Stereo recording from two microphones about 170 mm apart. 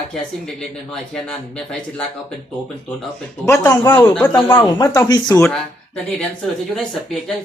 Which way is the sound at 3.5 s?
15° left (ahead or behind).